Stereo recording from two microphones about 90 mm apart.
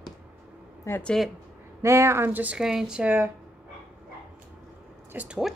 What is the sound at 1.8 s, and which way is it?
Speech, 35° right (ahead or behind).